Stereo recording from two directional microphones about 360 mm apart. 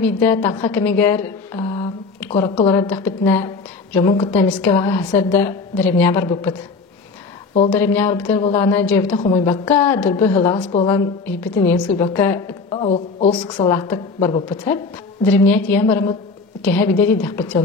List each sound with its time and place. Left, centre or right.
0.0 s a woman's voice: centre
7.7 s a woman's voice: centre
9.3 s a woman's voice: centre
9.7 s a woman's voice: centre
13.5 s a woman's voice: centre
15.3 s a woman's voice: centre